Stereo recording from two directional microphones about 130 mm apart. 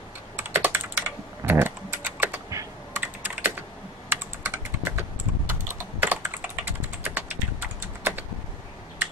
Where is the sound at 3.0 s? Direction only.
15° right (ahead or behind).